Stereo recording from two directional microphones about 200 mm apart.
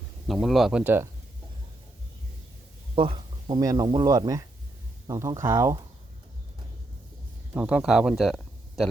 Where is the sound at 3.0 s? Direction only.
25° right (ahead or behind).